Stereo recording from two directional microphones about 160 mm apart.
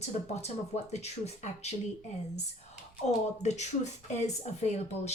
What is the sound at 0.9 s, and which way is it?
Speech, 40° left (ahead or behind).